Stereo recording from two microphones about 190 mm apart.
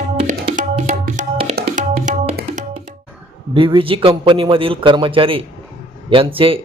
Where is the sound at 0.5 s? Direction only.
40° right (ahead or behind).